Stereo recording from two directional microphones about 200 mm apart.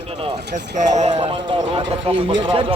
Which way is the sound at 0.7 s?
35° right (ahead or behind).